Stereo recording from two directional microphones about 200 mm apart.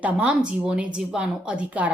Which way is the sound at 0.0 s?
5° right (ahead or behind).